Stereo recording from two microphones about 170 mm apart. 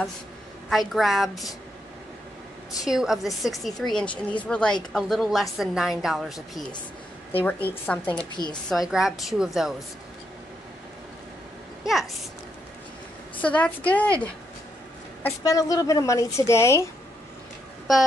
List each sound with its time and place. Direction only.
0.7 s a woman's voice: centre (ahead or behind)
2.8 s a woman's voice: 5° right (ahead or behind)
7.4 s a woman's voice: 10° left (ahead or behind)
8.3 s a woman's voice: 25° left (ahead or behind)
8.6 s a woman's voice: centre (ahead or behind)
11.8 s a woman's voice: centre (ahead or behind)
13.4 s a woman's voice: 10° left (ahead or behind)
15.4 s a woman's voice: 20° left (ahead or behind)